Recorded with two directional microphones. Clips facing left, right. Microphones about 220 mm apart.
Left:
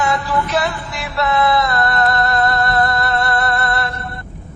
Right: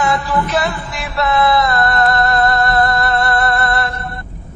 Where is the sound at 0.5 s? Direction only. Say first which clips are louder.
Right 1 dB; 50° right (ahead or behind).